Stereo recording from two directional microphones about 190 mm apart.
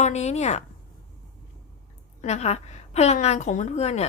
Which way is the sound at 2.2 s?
35° left (ahead or behind).